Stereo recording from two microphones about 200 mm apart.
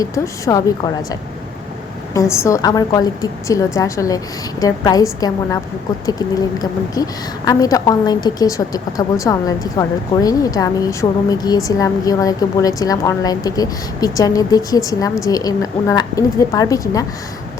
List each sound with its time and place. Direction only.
0.0 s a woman's voice: 15° left (ahead or behind)
2.3 s a woman's voice: 15° left (ahead or behind)
6.1 s a woman's voice: 20° left (ahead or behind)